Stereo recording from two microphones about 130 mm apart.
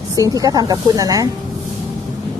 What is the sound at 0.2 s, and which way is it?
Speech, 30° right (ahead or behind).